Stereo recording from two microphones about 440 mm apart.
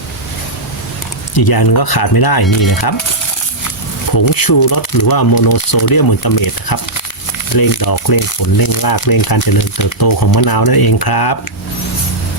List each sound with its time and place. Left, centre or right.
1.4 s speech: left
4.4 s speech: left